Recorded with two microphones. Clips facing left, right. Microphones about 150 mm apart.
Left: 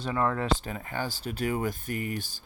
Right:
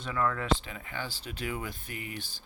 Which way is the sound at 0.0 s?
30° left (ahead or behind).